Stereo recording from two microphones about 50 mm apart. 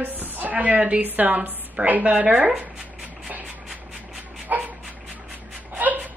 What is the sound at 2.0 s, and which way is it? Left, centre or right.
Speech, centre.